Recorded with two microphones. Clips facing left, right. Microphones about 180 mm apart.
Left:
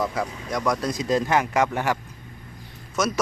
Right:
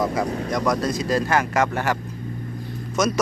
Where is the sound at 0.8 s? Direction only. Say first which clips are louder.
Right 1 dB; 15° left (ahead or behind).